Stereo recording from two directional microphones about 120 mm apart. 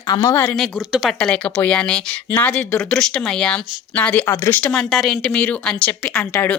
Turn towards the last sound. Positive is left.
turn(degrees=15)  # may be behind; listen again after turning